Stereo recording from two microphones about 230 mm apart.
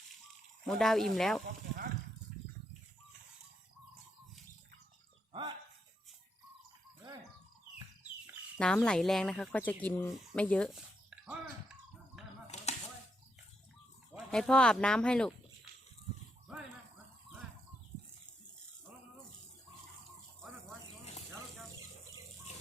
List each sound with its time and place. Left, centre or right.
0.7 s speech: centre
1.5 s speech: right
8.5 s speech: centre
12.2 s a sound: centre
12.5 s chopping: left
14.3 s speech: centre